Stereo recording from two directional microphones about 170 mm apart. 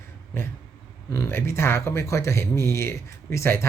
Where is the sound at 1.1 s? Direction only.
15° left (ahead or behind).